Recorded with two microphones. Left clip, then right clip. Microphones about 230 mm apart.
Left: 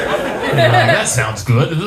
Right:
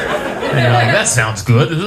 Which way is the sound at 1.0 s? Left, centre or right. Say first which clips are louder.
Right 2 dB; right.